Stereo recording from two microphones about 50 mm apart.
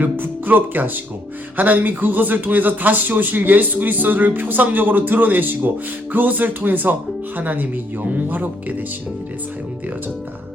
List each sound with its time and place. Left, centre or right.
0.0 s speech: right